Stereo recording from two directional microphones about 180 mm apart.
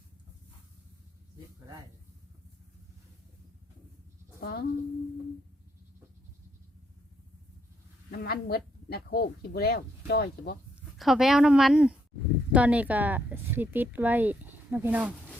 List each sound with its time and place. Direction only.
4.4 s a sound: 55° left (ahead or behind)
8.1 s speech: 60° left (ahead or behind)
10.9 s speech: centre (ahead or behind)